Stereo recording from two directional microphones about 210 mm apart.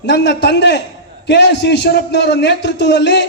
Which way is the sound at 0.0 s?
55° left (ahead or behind).